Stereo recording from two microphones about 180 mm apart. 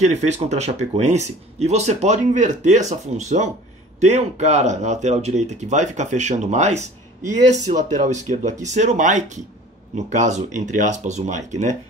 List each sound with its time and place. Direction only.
0.0 s speech: 40° right (ahead or behind)